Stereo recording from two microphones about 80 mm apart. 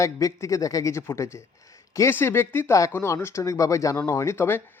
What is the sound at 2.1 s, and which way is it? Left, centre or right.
Speech, left.